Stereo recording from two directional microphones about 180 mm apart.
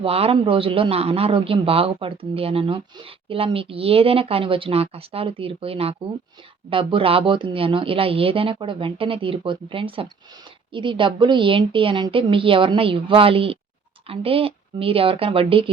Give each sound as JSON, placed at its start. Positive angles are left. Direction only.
{"t": 0.0, "sound": "a man's voice", "side_deg": -30}